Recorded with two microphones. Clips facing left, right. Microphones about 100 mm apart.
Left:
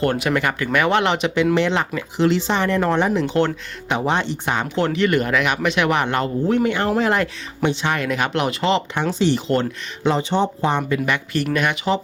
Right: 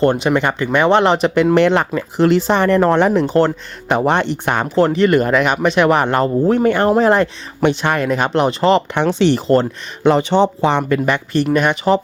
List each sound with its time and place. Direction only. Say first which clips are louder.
0.0 s speech: right 5 dB; 25° right (ahead or behind)
1.5 s speech: right 6 dB; 55° right (ahead or behind)
3.2 s speech: right 5 dB; 40° right (ahead or behind); by 4.7 s 55° right (ahead or behind)
4.7 s speech: right 7 dB; 40° right (ahead or behind)
6.8 s speech: right 6 dB; 30° right (ahead or behind)
7.6 s speech: right 5 dB; 60° right (ahead or behind)
8.0 s speech: right 7 dB; 35° right (ahead or behind)
9.0 s speech: right 5 dB; 65° right (ahead or behind)
11.0 s speech: right 5 dB; 35° right (ahead or behind)